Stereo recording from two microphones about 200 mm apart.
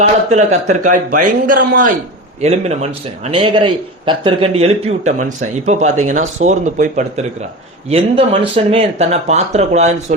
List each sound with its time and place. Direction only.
0.3 s a man's voice: 35° right (ahead or behind)
2.4 s a man's voice: 30° right (ahead or behind)